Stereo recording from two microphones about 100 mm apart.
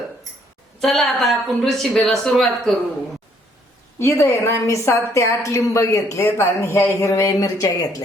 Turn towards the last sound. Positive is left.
turn(degrees=30)  # may be behind; listen again after turning